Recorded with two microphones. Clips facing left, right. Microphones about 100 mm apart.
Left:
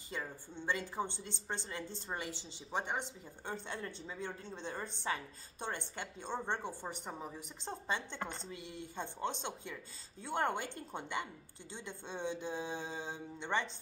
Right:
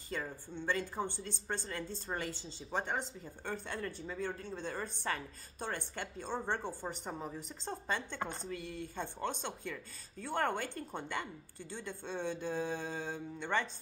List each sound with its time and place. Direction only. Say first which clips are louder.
0.1 s a sound: right 2 dB; 15° left (ahead or behind)
0.6 s a woman's voice: right 1 dB; 15° left (ahead or behind)
8.2 s a woman's voice: right 2 dB; 15° right (ahead or behind)
8.5 s a woman's voice: right 4 dB; 20° left (ahead or behind)